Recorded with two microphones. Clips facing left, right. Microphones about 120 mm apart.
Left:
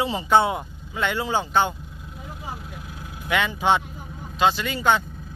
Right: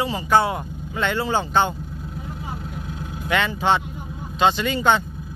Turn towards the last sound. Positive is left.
turn(degrees=5)  # may be behind; listen again after turning